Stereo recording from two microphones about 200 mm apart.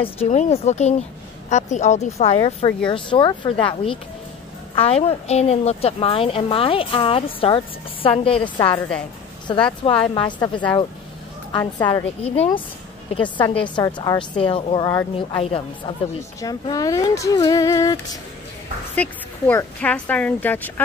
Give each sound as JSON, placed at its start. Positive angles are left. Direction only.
{"t": 0.0, "sound": "a woman's voice", "side_deg": 30}
{"t": 9.7, "sound": "a woman's voice", "side_deg": 25}
{"t": 16.2, "sound": "speech", "side_deg": 15}
{"t": 18.9, "sound": "speech", "side_deg": 10}